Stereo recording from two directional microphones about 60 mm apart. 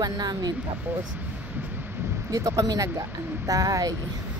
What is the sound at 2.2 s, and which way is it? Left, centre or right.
Speech, right.